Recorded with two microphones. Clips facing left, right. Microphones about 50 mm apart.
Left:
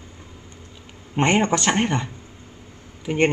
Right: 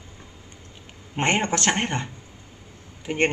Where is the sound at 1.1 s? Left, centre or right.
Centre.